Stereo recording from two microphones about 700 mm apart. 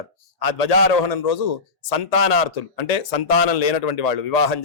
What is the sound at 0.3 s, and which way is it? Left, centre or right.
A man's voice, left.